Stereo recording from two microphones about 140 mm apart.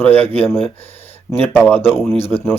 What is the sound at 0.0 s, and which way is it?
Speech, 15° left (ahead or behind).